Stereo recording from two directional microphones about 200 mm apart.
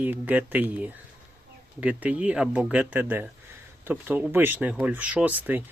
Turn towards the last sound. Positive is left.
turn(degrees=-10)  # may be behind; listen again after turning